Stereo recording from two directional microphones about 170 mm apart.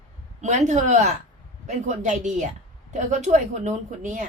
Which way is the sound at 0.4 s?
45° right (ahead or behind).